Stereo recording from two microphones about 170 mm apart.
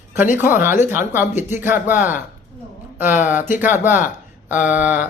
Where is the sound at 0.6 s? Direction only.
50° left (ahead or behind).